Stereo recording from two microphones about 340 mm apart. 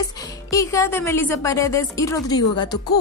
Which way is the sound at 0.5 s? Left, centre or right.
Centre.